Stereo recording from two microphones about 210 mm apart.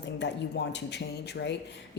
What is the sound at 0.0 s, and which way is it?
Speech, 55° left (ahead or behind).